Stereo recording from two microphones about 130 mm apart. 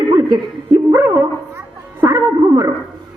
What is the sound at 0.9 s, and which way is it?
Bow-wow, 20° right (ahead or behind).